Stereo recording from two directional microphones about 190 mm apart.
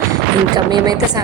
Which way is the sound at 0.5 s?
20° right (ahead or behind).